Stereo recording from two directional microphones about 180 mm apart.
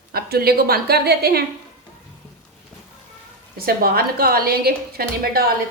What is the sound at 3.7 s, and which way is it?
A woman's voice, 60° right (ahead or behind).